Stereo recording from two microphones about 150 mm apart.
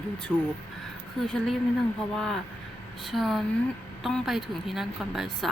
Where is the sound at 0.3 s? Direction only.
Centre (ahead or behind).